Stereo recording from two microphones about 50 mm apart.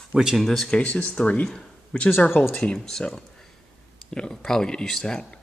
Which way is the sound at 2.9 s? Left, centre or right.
Centre.